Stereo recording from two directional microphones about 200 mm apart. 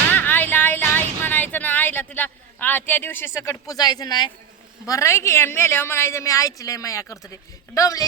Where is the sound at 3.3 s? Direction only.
15° left (ahead or behind).